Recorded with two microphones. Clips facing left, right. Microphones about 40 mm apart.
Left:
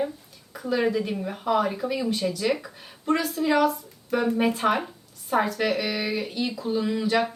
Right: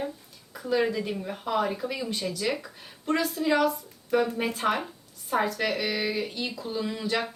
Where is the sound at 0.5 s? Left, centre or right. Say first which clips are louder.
Left 2 dB; centre.